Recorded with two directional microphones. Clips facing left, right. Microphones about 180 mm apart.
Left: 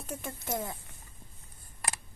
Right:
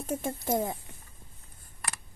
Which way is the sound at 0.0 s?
45° right (ahead or behind).